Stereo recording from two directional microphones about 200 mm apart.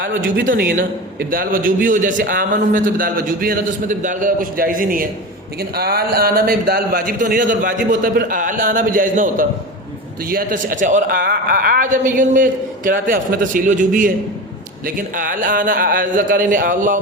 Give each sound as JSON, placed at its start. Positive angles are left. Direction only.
{"t": 0.3, "sound": "a man's voice", "side_deg": -45}